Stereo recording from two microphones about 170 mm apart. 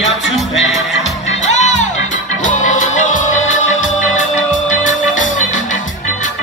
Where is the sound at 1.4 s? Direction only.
45° left (ahead or behind).